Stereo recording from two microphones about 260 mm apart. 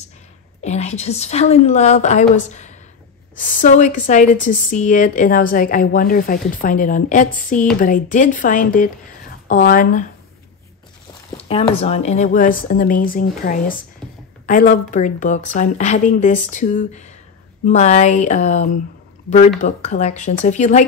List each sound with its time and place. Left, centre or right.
0.6 s a woman's voice: left
11.3 s a woman's voice: left